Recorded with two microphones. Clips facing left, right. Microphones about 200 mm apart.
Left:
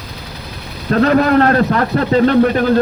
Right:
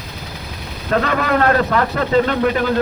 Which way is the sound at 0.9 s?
40° left (ahead or behind).